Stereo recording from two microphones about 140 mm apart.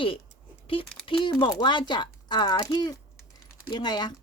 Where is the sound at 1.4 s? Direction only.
35° left (ahead or behind).